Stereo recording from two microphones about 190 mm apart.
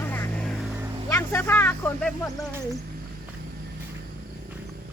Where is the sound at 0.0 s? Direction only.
10° left (ahead or behind).